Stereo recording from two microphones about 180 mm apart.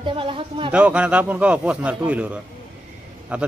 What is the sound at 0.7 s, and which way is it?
A man's voice, 5° right (ahead or behind).